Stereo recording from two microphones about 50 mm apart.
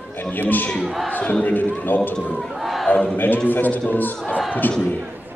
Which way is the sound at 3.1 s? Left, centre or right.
Left.